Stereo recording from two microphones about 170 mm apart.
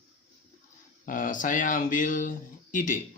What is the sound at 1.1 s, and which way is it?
Speech, 50° left (ahead or behind).